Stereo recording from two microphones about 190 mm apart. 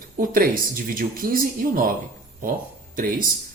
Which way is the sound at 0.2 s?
50° right (ahead or behind).